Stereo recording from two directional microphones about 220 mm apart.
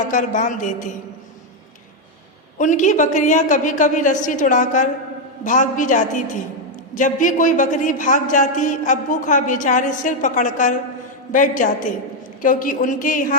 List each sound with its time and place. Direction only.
0.1 s a man's voice: 35° left (ahead or behind)
2.6 s a man's voice: 35° left (ahead or behind)